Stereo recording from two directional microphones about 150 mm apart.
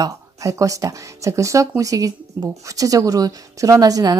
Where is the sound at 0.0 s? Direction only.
20° right (ahead or behind).